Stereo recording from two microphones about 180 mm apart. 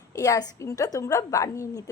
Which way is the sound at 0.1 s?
20° left (ahead or behind).